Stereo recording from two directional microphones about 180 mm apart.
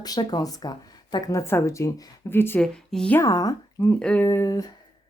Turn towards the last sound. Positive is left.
turn(degrees=20)  # may be behind; listen again after turning